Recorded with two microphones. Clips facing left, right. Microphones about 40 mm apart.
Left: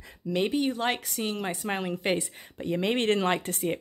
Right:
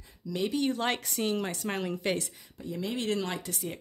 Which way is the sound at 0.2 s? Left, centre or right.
Left.